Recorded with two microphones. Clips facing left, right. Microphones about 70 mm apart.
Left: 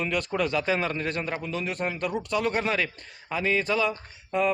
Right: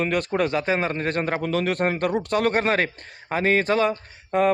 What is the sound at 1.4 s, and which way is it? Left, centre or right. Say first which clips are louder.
Speech: right 7 dB; right.